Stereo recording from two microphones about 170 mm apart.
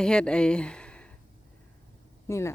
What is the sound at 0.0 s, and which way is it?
Speech, 5° left (ahead or behind).